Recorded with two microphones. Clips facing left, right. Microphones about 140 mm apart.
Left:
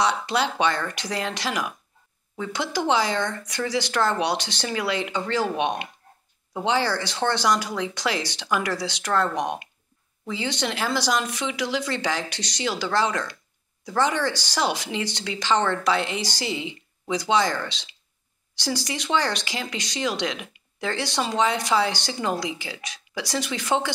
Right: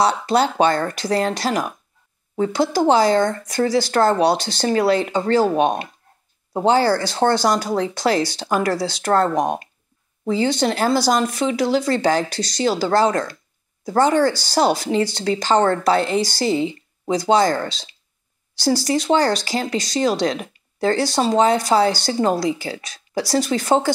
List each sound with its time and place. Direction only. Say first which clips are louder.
0.0 s speech: right 6 dB; 40° right (ahead or behind)